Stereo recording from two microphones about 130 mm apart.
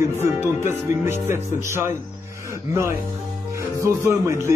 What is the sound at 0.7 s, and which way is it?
Speech, 20° right (ahead or behind).